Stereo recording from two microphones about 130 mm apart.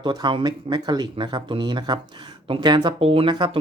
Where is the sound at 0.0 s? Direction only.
35° right (ahead or behind).